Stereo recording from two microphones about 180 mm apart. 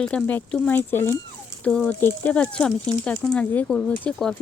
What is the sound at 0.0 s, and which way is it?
Speech, 5° left (ahead or behind).